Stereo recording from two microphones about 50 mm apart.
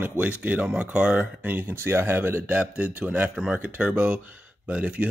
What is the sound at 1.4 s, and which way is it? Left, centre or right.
Speech, right.